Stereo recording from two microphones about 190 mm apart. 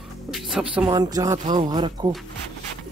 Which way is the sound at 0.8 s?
20° right (ahead or behind).